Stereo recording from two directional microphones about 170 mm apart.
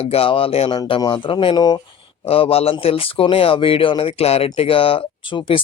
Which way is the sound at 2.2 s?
35° left (ahead or behind).